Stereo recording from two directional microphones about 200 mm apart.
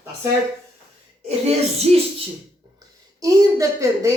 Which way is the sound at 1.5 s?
30° right (ahead or behind).